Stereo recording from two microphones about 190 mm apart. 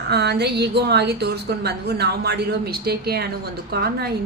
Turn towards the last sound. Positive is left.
turn(degrees=-55)  # may be behind; listen again after turning